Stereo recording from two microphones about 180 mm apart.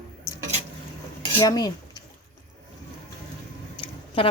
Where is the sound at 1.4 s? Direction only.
20° left (ahead or behind).